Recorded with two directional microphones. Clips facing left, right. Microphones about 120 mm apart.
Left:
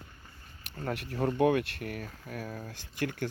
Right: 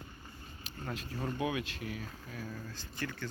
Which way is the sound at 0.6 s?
60° left (ahead or behind).